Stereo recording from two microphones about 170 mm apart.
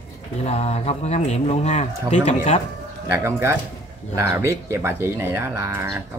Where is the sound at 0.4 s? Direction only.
40° left (ahead or behind).